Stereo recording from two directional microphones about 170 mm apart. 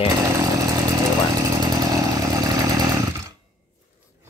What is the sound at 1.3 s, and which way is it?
Vehicle, 20° right (ahead or behind).